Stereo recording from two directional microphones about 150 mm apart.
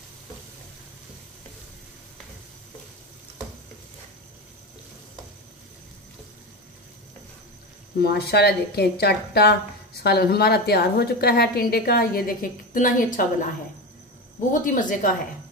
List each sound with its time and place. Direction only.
8.0 s a woman's voice: 90° left; by 13.5 s 60° left (ahead or behind)
14.5 s a woman's voice: 60° left (ahead or behind)